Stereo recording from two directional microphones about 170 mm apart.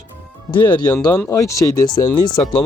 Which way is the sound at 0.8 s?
20° left (ahead or behind).